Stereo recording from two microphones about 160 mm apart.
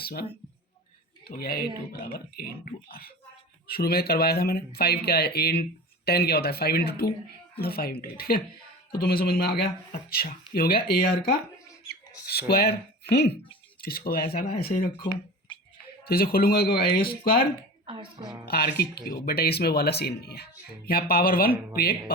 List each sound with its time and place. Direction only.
0.0 s speech: 70° left (ahead or behind)
12.3 s speech: 75° left (ahead or behind)
13.8 s speech: 70° left (ahead or behind)
14.9 s a sound: 30° left (ahead or behind)
16.0 s speech: 70° left (ahead or behind)
16.7 s speech: 30° left (ahead or behind)
17.8 s speech: 30° right (ahead or behind)
18.4 s speech: 75° left (ahead or behind)